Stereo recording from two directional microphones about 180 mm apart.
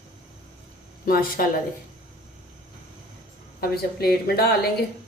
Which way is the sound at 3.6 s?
60° left (ahead or behind).